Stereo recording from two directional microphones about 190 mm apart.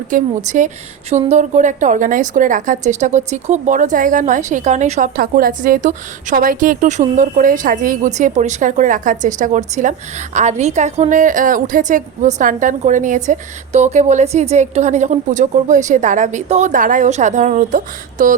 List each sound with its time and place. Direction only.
0.1 s a woman's voice: 45° right (ahead or behind)